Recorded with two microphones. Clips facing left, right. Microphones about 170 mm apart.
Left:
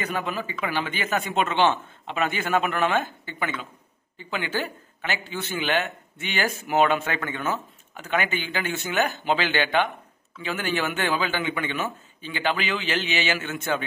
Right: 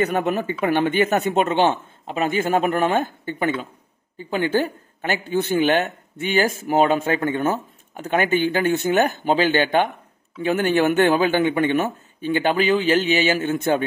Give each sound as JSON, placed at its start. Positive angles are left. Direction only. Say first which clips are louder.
{"t": 0.0, "sound": "speech", "louder": "right 8 dB", "side_deg": -60}
{"t": 0.6, "sound": "speech", "louder": "right 12 dB", "side_deg": -40}
{"t": 1.1, "sound": "speech", "louder": "right 6 dB", "side_deg": -55}
{"t": 2.0, "sound": "a man's voice", "louder": "right 5 dB", "side_deg": -40}